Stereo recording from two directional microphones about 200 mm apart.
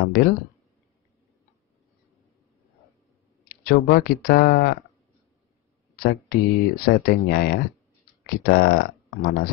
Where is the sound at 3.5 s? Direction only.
50° left (ahead or behind).